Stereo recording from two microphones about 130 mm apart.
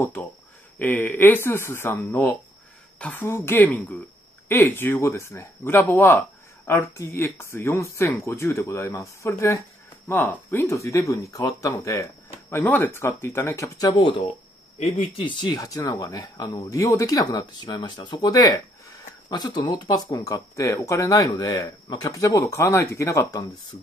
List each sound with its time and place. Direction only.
0.7 s speech: 15° left (ahead or behind)
14.0 s speech: 40° left (ahead or behind)
14.8 s speech: 55° left (ahead or behind)
15.2 s speech: 30° left (ahead or behind)